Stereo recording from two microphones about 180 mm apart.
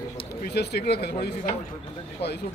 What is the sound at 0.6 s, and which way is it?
Speech, 65° left (ahead or behind).